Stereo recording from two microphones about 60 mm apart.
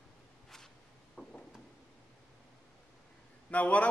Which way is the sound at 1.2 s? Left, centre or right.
Left.